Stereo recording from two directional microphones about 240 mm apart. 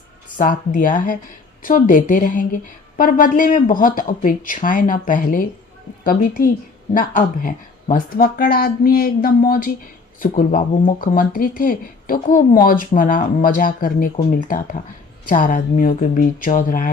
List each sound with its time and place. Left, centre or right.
0.3 s speech: left
6.9 s speech: left